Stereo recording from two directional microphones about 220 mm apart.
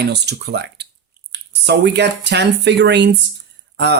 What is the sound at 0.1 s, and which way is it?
Speech, 50° right (ahead or behind).